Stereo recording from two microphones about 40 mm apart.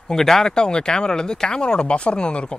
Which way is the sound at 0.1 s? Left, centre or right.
Centre.